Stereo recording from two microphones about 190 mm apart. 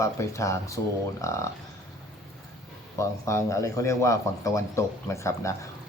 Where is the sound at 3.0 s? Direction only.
15° left (ahead or behind).